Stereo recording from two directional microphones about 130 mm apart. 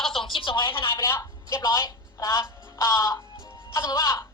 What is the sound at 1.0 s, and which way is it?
A woman's voice, 20° left (ahead or behind).